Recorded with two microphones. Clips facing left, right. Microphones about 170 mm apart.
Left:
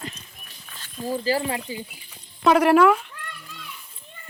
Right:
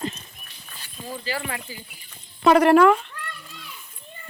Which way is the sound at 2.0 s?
5° left (ahead or behind).